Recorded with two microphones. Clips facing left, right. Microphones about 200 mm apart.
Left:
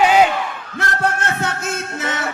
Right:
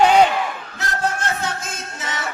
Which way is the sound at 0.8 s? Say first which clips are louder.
Left 3 dB; 60° left (ahead or behind).